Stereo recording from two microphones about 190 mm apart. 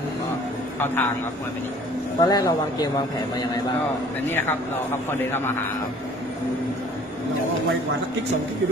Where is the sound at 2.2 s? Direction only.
20° left (ahead or behind).